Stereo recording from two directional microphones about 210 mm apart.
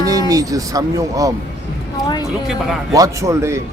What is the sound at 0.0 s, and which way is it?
Speech, 15° right (ahead or behind).